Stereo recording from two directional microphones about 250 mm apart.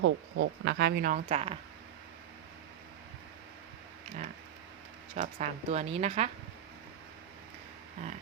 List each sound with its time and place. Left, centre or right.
0.0 s speech: right
5.1 s speech: right